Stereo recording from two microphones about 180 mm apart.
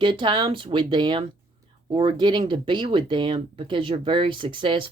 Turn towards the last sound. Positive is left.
turn(degrees=-30)  # may be behind; listen again after turning